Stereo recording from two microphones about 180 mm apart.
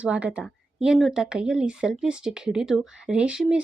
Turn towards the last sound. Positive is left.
turn(degrees=-5)  # may be behind; listen again after turning